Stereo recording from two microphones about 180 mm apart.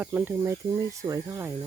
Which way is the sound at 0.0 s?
10° right (ahead or behind).